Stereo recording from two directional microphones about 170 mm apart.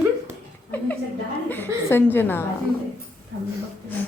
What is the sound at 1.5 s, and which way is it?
Speech, 10° left (ahead or behind).